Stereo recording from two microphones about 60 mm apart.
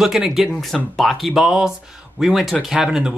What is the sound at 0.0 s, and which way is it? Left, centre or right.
Speech, centre.